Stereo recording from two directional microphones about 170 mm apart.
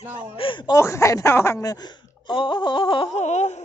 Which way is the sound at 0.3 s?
30° left (ahead or behind).